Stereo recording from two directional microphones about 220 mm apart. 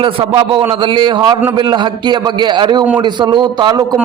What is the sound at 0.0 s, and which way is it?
A man's voice, 25° right (ahead or behind).